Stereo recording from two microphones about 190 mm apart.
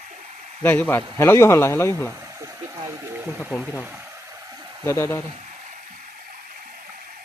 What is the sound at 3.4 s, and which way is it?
Speech, 5° right (ahead or behind).